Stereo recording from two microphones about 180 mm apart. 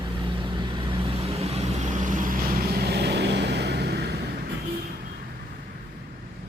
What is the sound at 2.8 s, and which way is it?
Vehicle, 65° right (ahead or behind).